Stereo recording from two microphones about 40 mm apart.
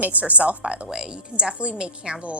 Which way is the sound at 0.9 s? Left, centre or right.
Right.